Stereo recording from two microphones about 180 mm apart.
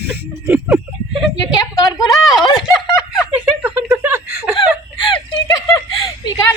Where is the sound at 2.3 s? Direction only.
Centre (ahead or behind).